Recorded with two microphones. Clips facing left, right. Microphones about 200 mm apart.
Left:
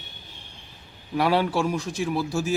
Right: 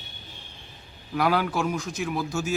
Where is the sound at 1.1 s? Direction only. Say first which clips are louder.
Left 2 dB; 30° left (ahead or behind).